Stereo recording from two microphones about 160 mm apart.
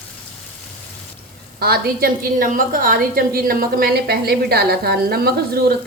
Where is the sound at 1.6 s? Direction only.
70° right (ahead or behind).